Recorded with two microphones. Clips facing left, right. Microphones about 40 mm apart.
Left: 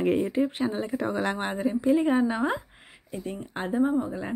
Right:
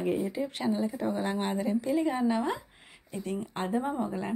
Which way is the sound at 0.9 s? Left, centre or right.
Left.